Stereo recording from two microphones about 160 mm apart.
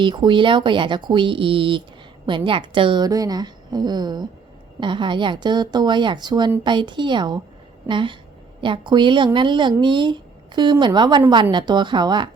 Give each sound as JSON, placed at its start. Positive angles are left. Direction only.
{"t": 0.0, "sound": "a woman's voice", "side_deg": -30}